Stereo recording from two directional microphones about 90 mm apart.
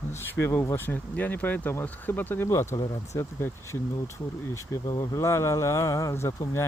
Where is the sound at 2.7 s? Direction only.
40° left (ahead or behind).